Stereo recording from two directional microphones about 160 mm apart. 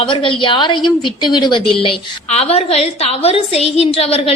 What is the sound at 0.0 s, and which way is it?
A woman's voice, 30° left (ahead or behind).